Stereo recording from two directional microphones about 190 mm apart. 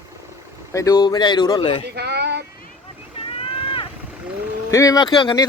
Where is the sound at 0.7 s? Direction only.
15° left (ahead or behind).